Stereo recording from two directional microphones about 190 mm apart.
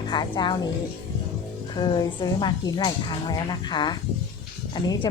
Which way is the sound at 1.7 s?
25° left (ahead or behind).